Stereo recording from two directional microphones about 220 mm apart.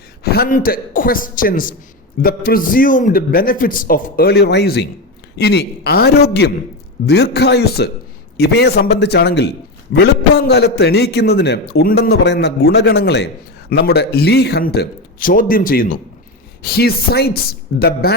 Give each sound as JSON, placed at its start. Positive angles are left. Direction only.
{"t": 0.3, "sound": "a man's voice", "side_deg": 40}